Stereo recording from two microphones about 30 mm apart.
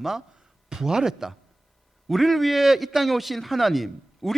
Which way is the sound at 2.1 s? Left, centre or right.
Centre.